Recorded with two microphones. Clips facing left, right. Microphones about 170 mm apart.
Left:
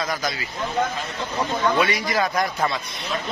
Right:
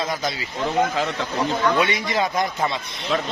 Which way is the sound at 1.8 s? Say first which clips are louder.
Even; 25° right (ahead or behind).